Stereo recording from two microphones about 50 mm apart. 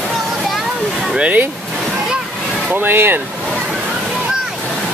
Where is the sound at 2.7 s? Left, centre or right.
Right.